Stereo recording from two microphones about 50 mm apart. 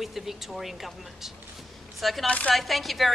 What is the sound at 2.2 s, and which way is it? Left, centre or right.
Speech, left.